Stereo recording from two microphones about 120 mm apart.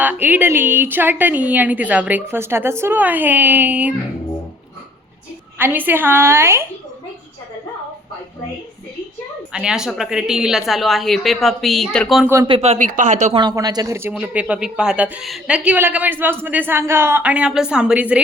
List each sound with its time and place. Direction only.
0.0 s a woman's voice: 15° right (ahead or behind)
5.5 s a woman's voice: 15° right (ahead or behind)
9.5 s a woman's voice: 5° right (ahead or behind)
12.5 s speech: 60° right (ahead or behind); by 13.3 s 80° right
13.3 s speech: 35° right (ahead or behind)
14.1 s a woman's voice: 10° right (ahead or behind)